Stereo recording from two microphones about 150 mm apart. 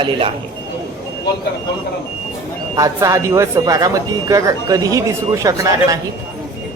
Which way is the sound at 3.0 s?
20° right (ahead or behind).